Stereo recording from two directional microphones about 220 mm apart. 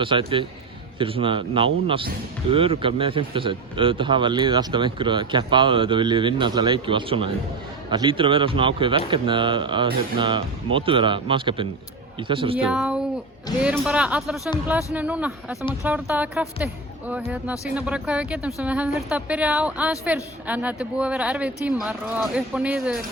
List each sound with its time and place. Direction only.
0.0 s speech: 25° right (ahead or behind)
12.7 s a sound: 5° right (ahead or behind)
13.6 s speech: 5° right (ahead or behind)